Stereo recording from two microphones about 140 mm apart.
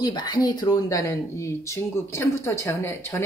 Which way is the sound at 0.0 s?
30° left (ahead or behind).